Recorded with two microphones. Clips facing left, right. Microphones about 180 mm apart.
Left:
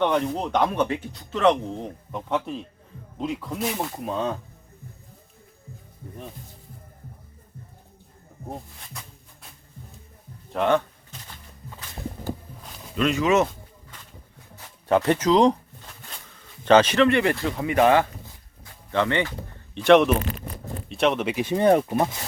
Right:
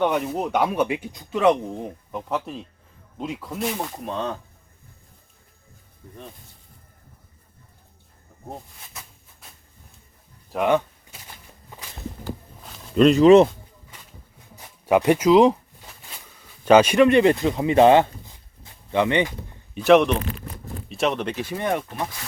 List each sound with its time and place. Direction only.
0.0 s speech: 5° right (ahead or behind)
8.4 s speech: 5° right (ahead or behind)
10.5 s a sound: 5° right (ahead or behind)
13.0 s speech: 35° right (ahead or behind)
14.5 s a sound: 15° right (ahead or behind)
16.6 s speech: 10° right (ahead or behind)
18.6 s a sound: 15° right (ahead or behind)
19.7 s speech: 5° right (ahead or behind)
21.5 s speech: 35° left (ahead or behind)